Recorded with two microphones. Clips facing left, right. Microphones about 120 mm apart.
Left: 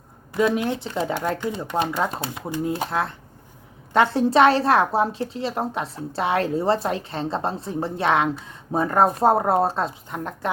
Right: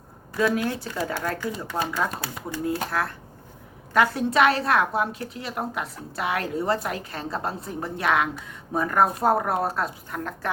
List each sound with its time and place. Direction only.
0.3 s a woman's voice: 20° left (ahead or behind)